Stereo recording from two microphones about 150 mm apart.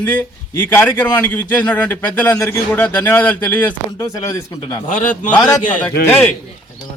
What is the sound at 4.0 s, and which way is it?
Speech, 25° left (ahead or behind).